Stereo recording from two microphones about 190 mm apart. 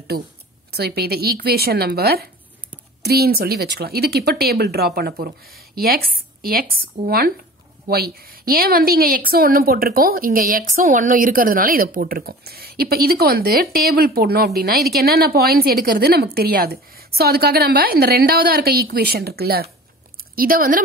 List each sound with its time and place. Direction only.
0.7 s a woman's voice: 60° right (ahead or behind)